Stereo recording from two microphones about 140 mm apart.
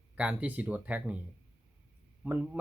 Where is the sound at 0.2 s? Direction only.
10° right (ahead or behind).